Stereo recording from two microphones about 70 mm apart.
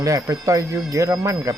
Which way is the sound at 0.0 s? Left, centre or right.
Right.